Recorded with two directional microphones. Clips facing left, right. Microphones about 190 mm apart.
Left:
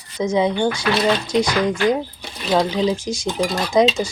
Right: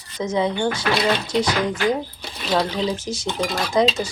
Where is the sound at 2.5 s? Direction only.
10° left (ahead or behind).